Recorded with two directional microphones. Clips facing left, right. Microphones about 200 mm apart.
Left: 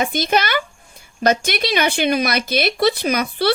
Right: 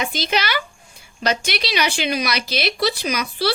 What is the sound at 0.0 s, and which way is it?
A child's voice, 50° left (ahead or behind).